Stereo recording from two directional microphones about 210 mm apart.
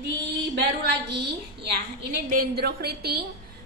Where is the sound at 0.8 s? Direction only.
55° right (ahead or behind).